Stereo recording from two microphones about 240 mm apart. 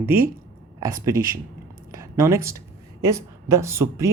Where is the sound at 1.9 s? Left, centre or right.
Centre.